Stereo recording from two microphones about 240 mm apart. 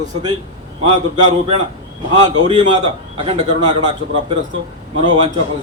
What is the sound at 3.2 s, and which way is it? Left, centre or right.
Speech, right.